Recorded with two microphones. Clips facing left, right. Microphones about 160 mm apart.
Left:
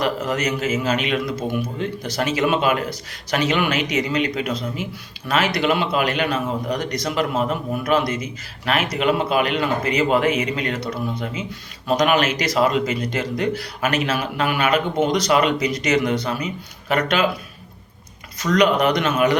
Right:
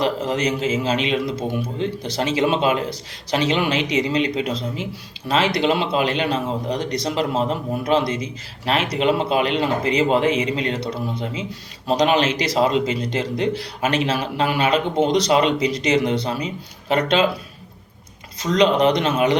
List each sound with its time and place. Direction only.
0.0 s a man's voice: 30° right (ahead or behind)
18.3 s a man's voice: 25° right (ahead or behind)